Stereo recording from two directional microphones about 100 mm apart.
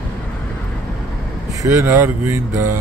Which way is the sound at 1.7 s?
20° right (ahead or behind).